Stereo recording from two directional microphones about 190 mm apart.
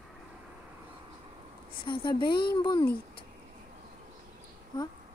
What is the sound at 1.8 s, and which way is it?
Speech, 25° left (ahead or behind).